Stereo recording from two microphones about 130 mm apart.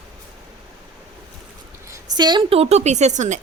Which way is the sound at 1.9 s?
35° right (ahead or behind).